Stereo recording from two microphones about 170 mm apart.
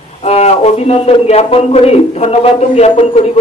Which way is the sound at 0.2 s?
35° left (ahead or behind).